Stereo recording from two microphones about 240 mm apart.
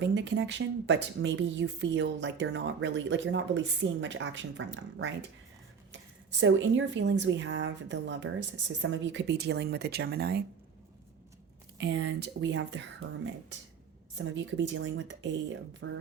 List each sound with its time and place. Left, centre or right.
0.0 s speech: right
6.4 s speech: right
11.8 s speech: right